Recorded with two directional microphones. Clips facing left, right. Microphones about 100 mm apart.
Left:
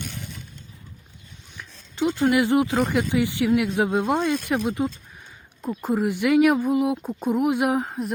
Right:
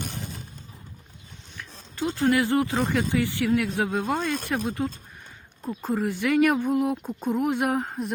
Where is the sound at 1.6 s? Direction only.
10° left (ahead or behind).